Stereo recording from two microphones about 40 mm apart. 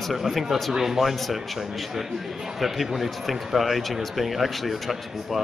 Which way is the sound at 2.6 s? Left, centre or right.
Centre.